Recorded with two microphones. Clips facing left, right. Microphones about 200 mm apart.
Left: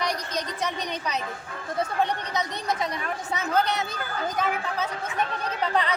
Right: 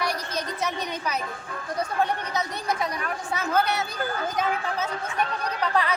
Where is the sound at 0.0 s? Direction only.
15° left (ahead or behind).